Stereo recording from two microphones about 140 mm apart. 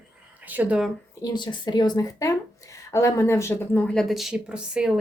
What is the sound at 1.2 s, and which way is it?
Speech, 30° left (ahead or behind).